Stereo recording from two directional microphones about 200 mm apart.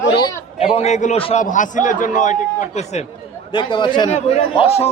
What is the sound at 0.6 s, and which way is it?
A man's voice, 30° left (ahead or behind).